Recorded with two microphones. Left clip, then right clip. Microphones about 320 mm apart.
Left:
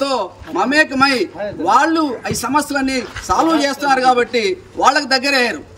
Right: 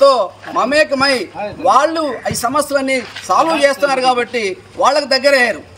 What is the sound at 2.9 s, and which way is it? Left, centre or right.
Speech, centre.